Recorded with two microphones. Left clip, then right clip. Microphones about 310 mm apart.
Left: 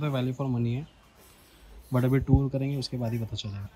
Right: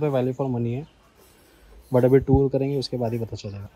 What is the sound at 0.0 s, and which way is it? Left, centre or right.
Speech, left.